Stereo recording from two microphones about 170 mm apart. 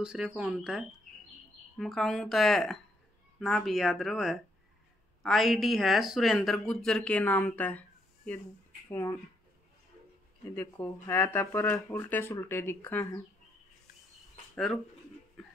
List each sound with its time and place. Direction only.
0.0 s speech: 5° right (ahead or behind)
8.8 s speech: 15° left (ahead or behind)
10.5 s speech: 10° left (ahead or behind)
14.5 s speech: 5° left (ahead or behind)